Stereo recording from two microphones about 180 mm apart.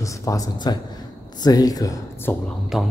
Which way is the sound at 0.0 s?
15° left (ahead or behind).